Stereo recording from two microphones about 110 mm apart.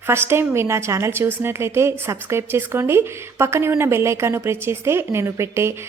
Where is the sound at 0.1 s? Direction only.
20° right (ahead or behind).